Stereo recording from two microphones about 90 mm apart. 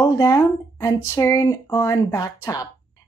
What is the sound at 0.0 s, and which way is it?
Speech, 45° left (ahead or behind).